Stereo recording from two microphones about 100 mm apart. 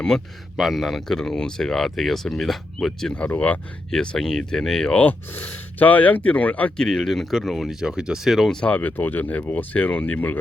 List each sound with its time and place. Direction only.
0.1 s speech: 5° left (ahead or behind)
8.6 s speech: 15° left (ahead or behind)